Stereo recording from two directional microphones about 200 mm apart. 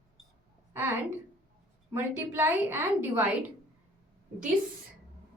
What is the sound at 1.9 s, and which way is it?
A woman's voice, 10° right (ahead or behind).